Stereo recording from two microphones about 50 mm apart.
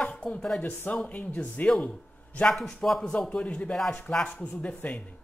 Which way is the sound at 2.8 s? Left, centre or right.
Centre.